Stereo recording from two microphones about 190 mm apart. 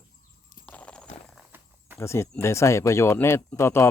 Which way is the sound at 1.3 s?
5° right (ahead or behind).